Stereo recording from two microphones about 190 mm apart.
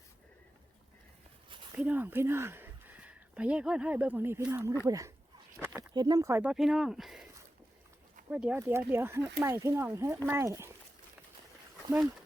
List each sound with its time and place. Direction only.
1.7 s speech: 10° right (ahead or behind)
8.3 s speech: 5° right (ahead or behind)